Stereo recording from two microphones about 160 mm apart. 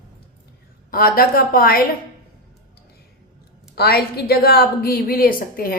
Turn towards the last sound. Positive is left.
turn(degrees=65)  # may be behind; listen again after turning